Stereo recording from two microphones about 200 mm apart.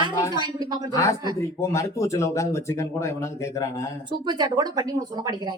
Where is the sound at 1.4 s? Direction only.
15° left (ahead or behind).